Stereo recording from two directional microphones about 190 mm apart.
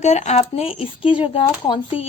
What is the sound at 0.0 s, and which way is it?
A woman's voice, 35° left (ahead or behind).